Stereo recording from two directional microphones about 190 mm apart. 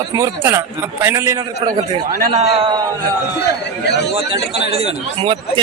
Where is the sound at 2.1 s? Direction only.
45° right (ahead or behind).